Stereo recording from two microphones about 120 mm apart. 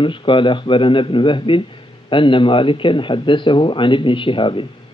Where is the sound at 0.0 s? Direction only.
45° left (ahead or behind).